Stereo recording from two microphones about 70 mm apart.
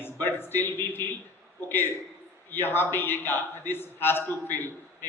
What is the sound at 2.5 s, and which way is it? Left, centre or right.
A man's voice, left.